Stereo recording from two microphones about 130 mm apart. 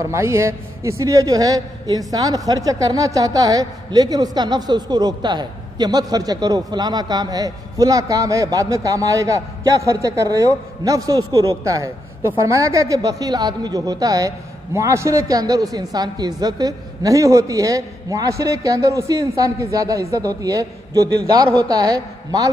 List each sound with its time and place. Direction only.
0.0 s a man's voice: 20° right (ahead or behind)